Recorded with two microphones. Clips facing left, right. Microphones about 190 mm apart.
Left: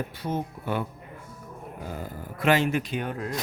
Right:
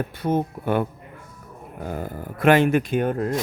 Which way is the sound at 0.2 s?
55° right (ahead or behind).